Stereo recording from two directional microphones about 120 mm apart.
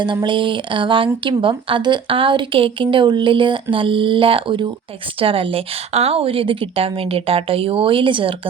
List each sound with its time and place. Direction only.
0.0 s speech: 40° right (ahead or behind)